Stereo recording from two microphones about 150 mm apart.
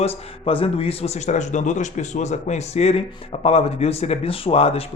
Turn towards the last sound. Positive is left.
turn(degrees=40)  # may be behind; listen again after turning